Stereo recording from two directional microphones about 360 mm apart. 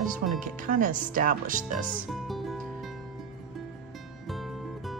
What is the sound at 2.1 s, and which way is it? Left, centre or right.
Music, centre.